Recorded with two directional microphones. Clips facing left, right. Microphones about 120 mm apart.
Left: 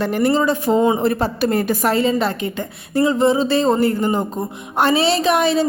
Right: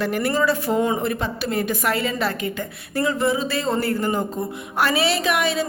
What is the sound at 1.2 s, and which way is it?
A woman's voice, 40° left (ahead or behind).